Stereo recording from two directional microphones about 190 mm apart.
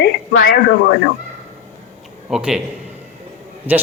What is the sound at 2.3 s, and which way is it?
Speech, 5° right (ahead or behind).